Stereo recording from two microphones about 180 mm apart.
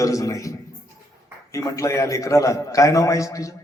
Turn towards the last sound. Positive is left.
turn(degrees=15)  # may be behind; listen again after turning